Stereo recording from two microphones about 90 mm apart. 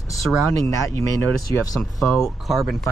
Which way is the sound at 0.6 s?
35° left (ahead or behind).